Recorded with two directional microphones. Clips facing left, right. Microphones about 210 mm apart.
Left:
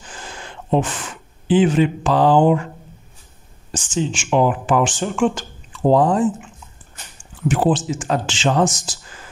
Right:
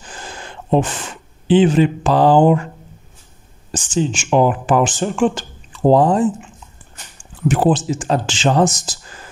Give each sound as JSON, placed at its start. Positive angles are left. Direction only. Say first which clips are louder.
{"t": 0.2, "sound": "a sound", "louder": "right 2 dB", "side_deg": -40}
{"t": 1.5, "sound": "speech", "louder": "right 3 dB", "side_deg": -30}
{"t": 3.9, "sound": "speech", "louder": "right 3 dB", "side_deg": -40}
{"t": 7.4, "sound": "speech", "louder": "right 2 dB", "side_deg": -40}